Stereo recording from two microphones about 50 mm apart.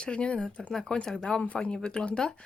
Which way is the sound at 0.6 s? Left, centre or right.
Centre.